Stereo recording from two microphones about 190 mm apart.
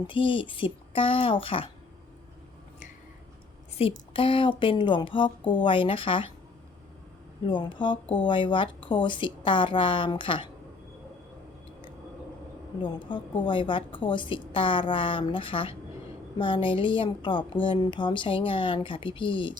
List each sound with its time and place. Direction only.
0.1 s a woman's voice: 25° left (ahead or behind)
3.8 s a woman's voice: 30° left (ahead or behind)
7.4 s a woman's voice: 25° left (ahead or behind)
12.8 s a woman's voice: 25° left (ahead or behind)